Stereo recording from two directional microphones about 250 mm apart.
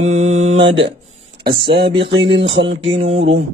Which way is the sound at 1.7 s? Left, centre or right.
Right.